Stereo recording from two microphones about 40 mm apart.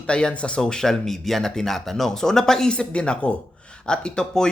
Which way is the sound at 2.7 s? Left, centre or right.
Left.